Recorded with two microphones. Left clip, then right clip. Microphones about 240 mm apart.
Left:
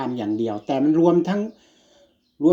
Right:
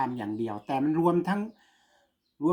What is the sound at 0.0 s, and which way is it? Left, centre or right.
Speech, right.